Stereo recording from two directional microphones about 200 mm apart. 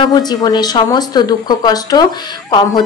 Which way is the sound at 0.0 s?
20° left (ahead or behind).